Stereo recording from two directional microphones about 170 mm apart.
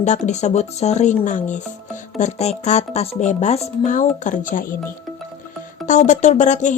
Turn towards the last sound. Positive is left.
turn(degrees=45)  # may be behind; listen again after turning